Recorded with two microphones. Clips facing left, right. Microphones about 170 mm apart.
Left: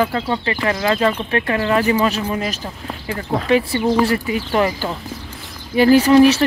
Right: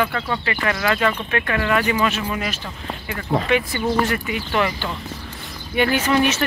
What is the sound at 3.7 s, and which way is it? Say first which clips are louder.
Speech: left 4 dB; 30° left (ahead or behind).